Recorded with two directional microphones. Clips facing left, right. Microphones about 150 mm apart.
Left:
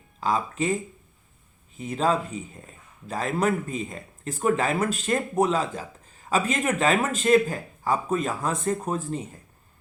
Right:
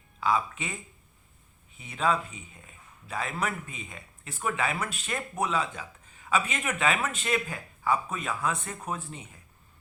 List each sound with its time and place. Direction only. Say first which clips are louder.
0.2 s a man's voice: left 3 dB; 40° left (ahead or behind)
1.8 s a man's voice: left 4 dB; 40° left (ahead or behind)